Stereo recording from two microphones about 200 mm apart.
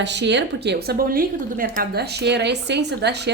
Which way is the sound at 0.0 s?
60° right (ahead or behind).